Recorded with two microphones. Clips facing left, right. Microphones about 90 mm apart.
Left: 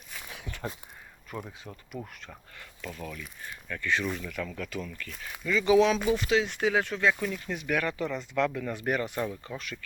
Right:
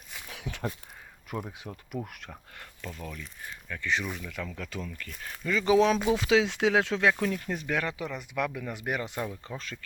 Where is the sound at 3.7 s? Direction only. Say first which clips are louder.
Left 2 dB; 20° right (ahead or behind).